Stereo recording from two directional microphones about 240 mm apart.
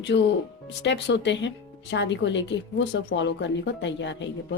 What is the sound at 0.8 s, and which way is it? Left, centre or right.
A woman's voice, left.